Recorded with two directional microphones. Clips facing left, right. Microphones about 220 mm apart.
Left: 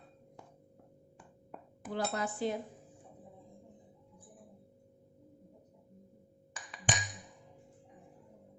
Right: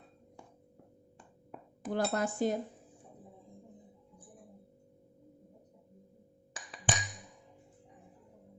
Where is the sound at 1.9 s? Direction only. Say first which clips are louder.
Right 4 dB; 45° right (ahead or behind).